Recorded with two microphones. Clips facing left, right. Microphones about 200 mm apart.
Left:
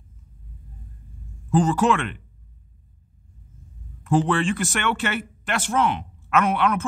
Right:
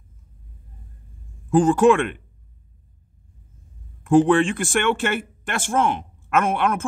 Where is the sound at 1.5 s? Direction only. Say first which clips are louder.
Right 5 dB; 50° right (ahead or behind).